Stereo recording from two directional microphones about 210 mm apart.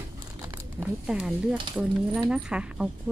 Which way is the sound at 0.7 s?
5° right (ahead or behind).